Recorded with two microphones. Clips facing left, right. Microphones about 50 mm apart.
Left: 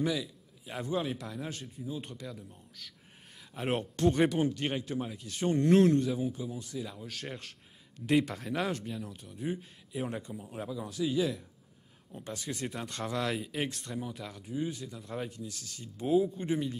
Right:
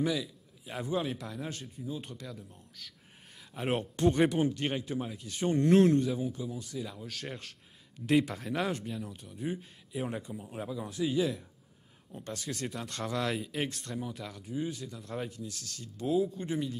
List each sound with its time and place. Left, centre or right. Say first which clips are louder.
0.0 s speech: right 1 dB; centre
3.3 s a sound: even; centre
4.1 s speech: right 1 dB; centre
12.2 s speech: even; centre